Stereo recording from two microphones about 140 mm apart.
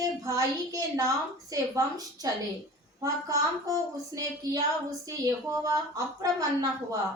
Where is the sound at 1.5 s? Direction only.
25° right (ahead or behind).